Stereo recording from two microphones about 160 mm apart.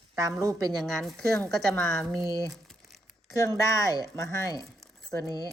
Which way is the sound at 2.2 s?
20° right (ahead or behind).